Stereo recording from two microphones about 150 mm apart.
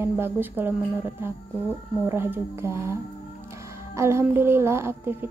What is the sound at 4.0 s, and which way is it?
Child singing, 15° right (ahead or behind).